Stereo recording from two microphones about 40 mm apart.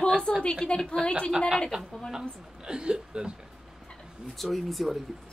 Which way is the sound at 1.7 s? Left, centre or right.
Right.